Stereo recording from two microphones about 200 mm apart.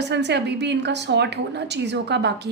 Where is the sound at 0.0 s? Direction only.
60° right (ahead or behind).